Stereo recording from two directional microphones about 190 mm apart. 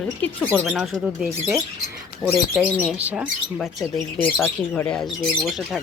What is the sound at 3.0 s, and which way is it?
Speech, 5° right (ahead or behind).